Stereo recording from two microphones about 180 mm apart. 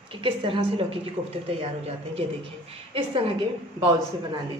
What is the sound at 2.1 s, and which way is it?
A woman's voice, 30° right (ahead or behind).